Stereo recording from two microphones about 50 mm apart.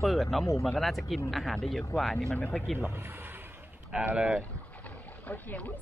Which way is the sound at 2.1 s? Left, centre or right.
Left.